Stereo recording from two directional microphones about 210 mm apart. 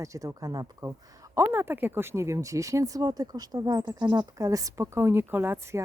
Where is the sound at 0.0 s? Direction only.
15° right (ahead or behind).